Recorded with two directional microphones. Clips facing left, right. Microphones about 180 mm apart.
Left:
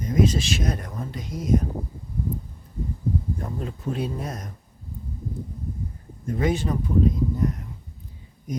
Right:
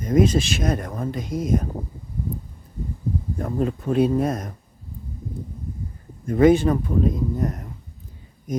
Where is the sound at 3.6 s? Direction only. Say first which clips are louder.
Right 11 dB; 60° right (ahead or behind).